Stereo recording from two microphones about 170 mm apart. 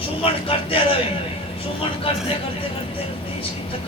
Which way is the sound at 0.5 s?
35° left (ahead or behind).